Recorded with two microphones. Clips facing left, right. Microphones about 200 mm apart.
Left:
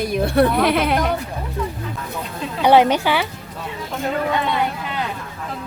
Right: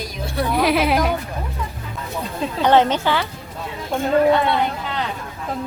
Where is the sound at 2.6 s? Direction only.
10° left (ahead or behind).